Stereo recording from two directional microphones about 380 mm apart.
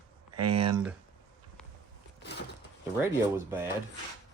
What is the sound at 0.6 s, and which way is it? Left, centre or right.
Speech, centre.